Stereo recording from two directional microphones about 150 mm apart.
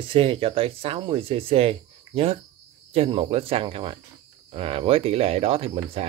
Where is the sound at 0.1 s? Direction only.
35° right (ahead or behind).